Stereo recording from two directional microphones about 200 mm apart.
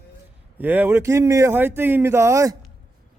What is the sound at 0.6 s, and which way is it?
Speech, 10° right (ahead or behind).